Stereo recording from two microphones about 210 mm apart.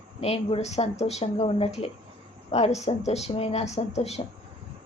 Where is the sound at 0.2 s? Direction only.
30° left (ahead or behind).